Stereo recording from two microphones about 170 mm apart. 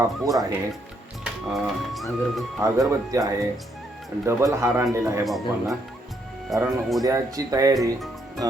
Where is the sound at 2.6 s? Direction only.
20° right (ahead or behind).